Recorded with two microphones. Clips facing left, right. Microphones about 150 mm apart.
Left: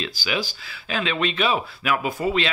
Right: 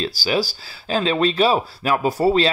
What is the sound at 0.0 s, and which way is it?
Speech, 35° right (ahead or behind).